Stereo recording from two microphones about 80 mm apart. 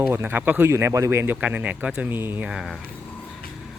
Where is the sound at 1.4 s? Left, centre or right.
Centre.